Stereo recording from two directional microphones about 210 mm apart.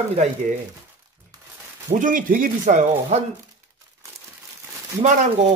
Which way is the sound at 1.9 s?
40° right (ahead or behind).